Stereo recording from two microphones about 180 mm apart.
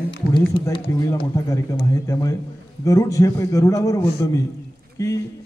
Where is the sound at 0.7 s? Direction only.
20° left (ahead or behind).